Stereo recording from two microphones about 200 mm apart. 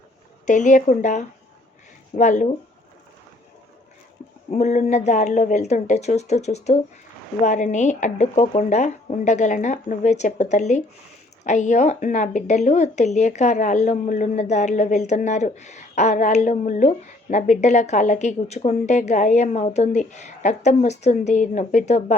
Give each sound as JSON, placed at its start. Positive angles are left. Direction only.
{"t": 0.4, "sound": "speech", "side_deg": 40}
{"t": 4.5, "sound": "speech", "side_deg": 35}